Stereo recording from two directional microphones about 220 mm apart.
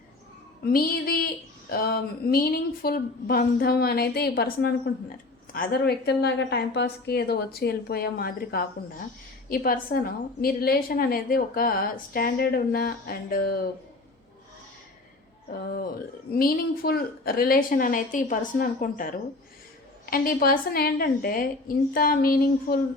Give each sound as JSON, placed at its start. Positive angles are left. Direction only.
{"t": 0.6, "sound": "a sound", "side_deg": 40}
{"t": 1.7, "sound": "a woman's voice", "side_deg": 40}
{"t": 15.4, "sound": "a woman's voice", "side_deg": 40}